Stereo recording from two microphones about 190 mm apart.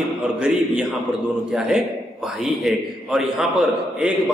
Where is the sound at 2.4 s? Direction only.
Centre (ahead or behind).